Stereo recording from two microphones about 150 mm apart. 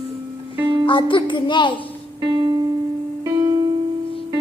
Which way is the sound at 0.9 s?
35° left (ahead or behind).